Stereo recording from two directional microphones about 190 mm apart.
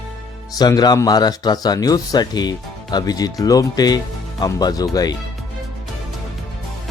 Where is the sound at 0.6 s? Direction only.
20° left (ahead or behind).